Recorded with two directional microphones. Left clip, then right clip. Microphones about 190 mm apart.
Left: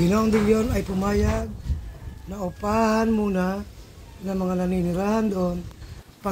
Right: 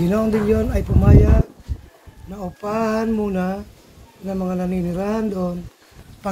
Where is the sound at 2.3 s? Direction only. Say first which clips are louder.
Even; 30° left (ahead or behind).